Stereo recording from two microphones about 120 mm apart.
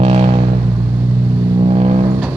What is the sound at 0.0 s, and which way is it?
Vehicle, 60° right (ahead or behind).